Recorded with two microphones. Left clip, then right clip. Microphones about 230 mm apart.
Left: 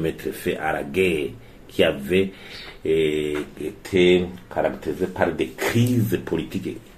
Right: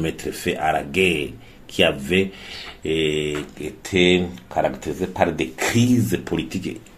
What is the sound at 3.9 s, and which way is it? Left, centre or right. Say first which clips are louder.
Speech: even; right.